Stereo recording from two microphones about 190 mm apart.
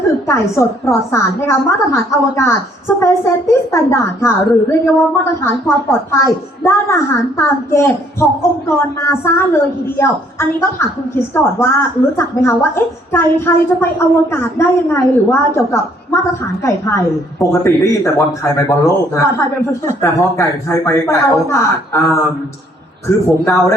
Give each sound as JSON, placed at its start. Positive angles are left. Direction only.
{"t": 0.3, "sound": "a woman's voice", "side_deg": 15}